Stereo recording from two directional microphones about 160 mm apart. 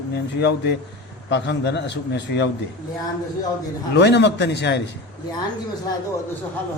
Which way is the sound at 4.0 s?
90° left.